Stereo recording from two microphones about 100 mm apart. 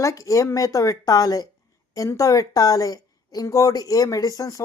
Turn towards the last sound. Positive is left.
turn(degrees=35)  # may be behind; listen again after turning